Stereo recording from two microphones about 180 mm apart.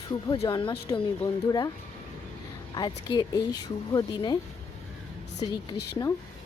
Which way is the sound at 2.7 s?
25° left (ahead or behind).